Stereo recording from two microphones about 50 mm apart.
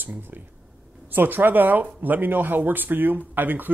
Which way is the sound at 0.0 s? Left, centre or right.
Right.